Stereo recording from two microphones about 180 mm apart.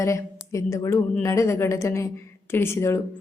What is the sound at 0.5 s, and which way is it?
A woman's voice, 15° left (ahead or behind).